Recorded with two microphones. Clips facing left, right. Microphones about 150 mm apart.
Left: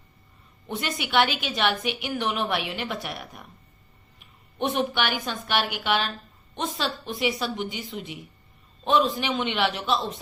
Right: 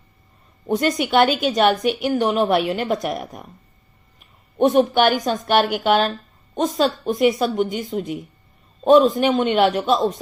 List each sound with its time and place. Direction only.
0.7 s speech: 45° right (ahead or behind)
4.5 s speech: 45° right (ahead or behind)